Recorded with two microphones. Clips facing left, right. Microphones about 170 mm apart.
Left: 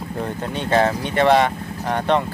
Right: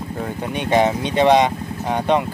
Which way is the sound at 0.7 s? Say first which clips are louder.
Right 1 dB; 15° right (ahead or behind).